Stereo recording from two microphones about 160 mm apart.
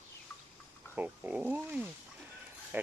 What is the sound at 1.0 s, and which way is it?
Speech, 10° right (ahead or behind).